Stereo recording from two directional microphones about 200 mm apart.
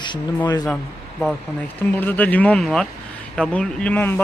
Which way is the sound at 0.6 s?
5° left (ahead or behind).